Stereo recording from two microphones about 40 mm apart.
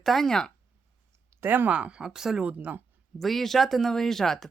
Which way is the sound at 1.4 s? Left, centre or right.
Right.